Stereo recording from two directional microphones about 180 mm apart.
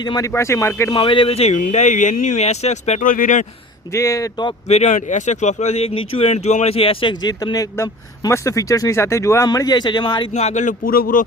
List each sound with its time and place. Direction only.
0.0 s speech: 20° left (ahead or behind)
0.9 s speech: 30° left (ahead or behind); by 3.4 s 45° left (ahead or behind)
3.9 s speech: 20° left (ahead or behind)
4.7 s speech: 40° left (ahead or behind)